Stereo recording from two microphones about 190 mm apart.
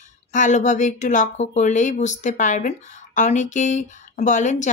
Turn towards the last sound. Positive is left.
turn(degrees=40)  # may be behind; listen again after turning